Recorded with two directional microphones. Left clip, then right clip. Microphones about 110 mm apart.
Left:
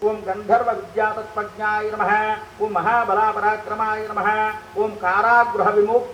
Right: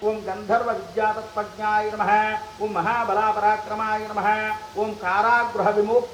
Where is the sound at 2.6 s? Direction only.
80° left.